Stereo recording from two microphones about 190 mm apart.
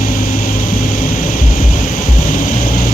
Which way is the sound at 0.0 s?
45° left (ahead or behind).